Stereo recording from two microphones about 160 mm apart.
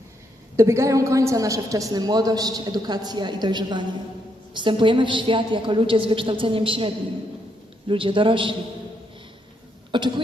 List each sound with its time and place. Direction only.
0.5 s a woman's voice: 20° right (ahead or behind)
9.9 s a woman's voice: 30° right (ahead or behind)